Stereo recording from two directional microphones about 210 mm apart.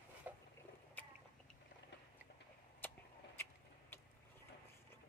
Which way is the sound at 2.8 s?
10° left (ahead or behind).